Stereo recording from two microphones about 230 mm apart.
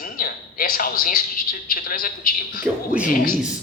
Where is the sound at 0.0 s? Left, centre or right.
Left.